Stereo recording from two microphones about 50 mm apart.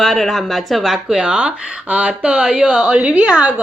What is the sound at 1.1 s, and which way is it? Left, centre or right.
Speech, centre.